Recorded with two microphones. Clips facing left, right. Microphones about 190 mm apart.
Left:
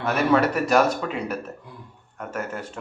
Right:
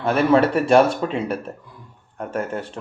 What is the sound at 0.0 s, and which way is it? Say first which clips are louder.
Speech: right 4 dB; 30° right (ahead or behind).